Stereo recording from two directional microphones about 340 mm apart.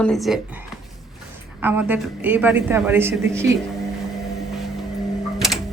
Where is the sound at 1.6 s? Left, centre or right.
Centre.